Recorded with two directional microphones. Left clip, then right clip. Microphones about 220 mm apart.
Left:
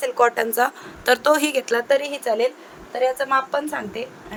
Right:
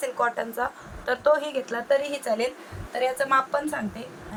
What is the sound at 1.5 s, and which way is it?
A woman's voice, 50° left (ahead or behind).